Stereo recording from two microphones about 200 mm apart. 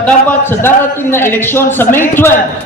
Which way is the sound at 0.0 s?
10° left (ahead or behind).